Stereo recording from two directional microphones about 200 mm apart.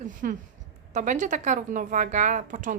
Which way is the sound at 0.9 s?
40° right (ahead or behind).